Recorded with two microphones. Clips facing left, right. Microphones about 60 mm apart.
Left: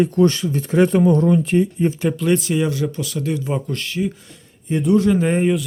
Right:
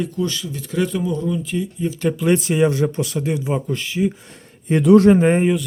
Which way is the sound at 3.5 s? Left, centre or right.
Centre.